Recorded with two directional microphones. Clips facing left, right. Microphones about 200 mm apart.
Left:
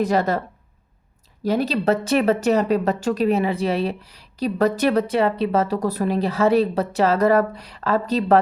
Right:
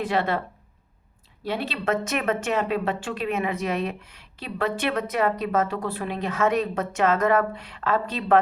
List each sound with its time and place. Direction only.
0.0 s a woman's voice: 40° left (ahead or behind)